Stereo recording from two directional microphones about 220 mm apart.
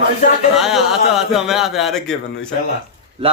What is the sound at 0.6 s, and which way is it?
Speech, centre (ahead or behind).